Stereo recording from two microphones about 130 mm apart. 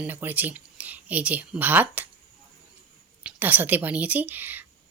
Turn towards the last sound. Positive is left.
turn(degrees=-15)  # may be behind; listen again after turning